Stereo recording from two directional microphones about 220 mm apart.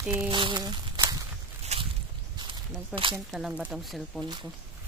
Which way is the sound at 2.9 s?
5° right (ahead or behind).